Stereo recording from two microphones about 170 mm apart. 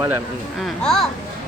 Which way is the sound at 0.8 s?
5° left (ahead or behind).